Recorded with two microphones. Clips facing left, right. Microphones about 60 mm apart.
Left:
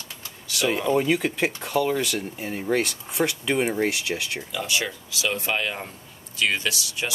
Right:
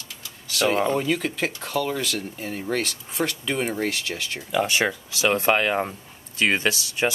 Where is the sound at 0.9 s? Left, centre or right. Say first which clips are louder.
Left 2 dB; centre.